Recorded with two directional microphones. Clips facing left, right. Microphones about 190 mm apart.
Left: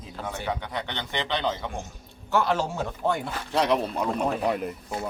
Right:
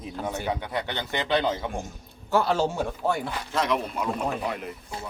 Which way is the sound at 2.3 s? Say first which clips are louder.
Right 1 dB; 35° right (ahead or behind).